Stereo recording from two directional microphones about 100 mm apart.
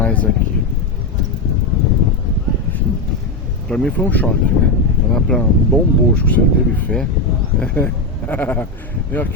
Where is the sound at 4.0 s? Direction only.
15° left (ahead or behind).